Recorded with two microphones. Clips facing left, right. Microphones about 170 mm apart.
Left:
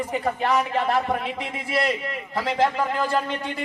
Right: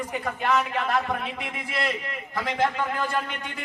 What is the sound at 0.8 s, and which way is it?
Speech, 30° left (ahead or behind).